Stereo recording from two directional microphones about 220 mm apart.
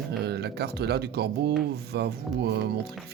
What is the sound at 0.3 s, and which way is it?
Speech, 45° right (ahead or behind).